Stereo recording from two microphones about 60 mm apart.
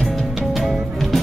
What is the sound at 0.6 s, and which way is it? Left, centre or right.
Music, centre.